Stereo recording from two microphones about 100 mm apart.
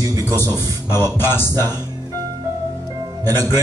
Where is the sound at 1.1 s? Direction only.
20° left (ahead or behind).